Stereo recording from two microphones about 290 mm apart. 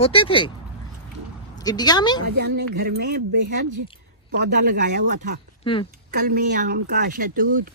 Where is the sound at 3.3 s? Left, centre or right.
Right.